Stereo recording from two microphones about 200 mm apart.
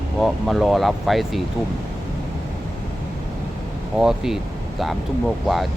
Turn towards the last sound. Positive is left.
turn(degrees=0)  # may be behind; listen again after turning